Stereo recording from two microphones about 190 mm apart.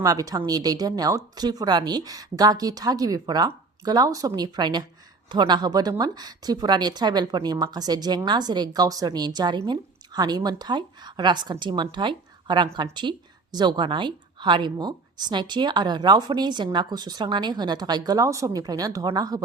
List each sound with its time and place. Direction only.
0.0 s a woman's voice: 20° right (ahead or behind)